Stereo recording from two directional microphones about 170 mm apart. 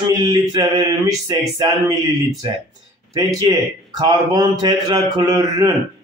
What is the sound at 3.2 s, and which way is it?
Speech, 20° right (ahead or behind).